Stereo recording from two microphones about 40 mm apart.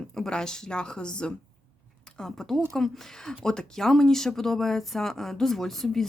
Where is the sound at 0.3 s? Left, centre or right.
Centre.